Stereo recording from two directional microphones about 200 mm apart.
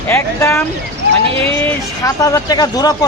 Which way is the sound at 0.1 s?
15° left (ahead or behind).